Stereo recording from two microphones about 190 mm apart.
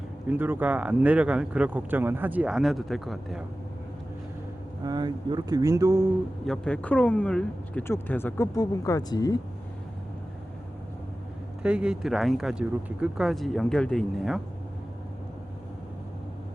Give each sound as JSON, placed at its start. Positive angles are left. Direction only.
{"t": 0.3, "sound": "speech", "side_deg": -10}
{"t": 4.8, "sound": "speech", "side_deg": -20}
{"t": 6.4, "sound": "speech", "side_deg": 5}
{"t": 11.6, "sound": "speech", "side_deg": -5}